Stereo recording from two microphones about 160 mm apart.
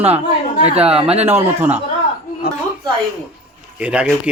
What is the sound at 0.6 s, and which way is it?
Speech, 40° right (ahead or behind).